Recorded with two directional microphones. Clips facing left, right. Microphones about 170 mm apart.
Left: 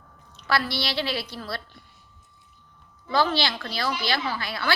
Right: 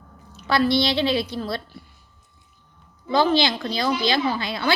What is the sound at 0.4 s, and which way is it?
A woman's voice, 20° right (ahead or behind).